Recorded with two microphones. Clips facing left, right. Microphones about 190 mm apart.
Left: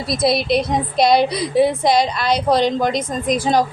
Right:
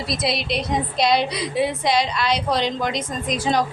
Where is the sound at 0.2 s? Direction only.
45° left (ahead or behind).